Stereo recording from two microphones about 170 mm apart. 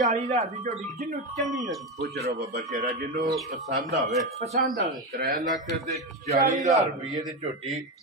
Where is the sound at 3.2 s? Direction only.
Centre (ahead or behind).